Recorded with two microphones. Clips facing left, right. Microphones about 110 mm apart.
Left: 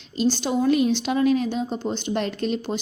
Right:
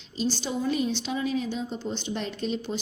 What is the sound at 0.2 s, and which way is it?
A woman's voice, 60° left (ahead or behind).